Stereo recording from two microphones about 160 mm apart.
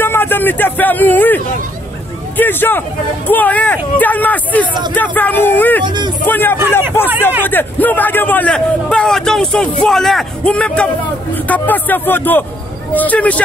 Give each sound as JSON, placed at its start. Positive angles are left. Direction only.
{"t": 0.0, "sound": "a man's voice", "side_deg": 10}
{"t": 5.9, "sound": "speech", "side_deg": -30}
{"t": 6.2, "sound": "a man's voice", "side_deg": 10}